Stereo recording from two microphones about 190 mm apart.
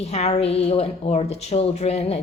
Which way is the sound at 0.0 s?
35° left (ahead or behind).